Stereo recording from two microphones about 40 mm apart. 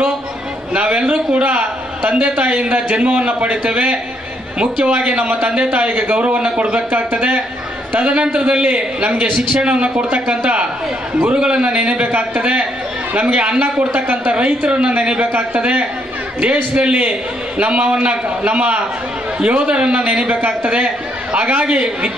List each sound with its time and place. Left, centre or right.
0.7 s a man's voice: right